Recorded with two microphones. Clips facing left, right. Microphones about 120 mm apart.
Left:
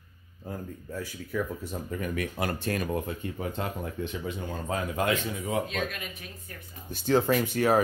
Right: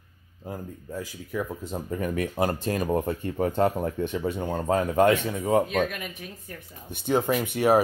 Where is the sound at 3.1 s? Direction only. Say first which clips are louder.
Right 7 dB; 45° right (ahead or behind).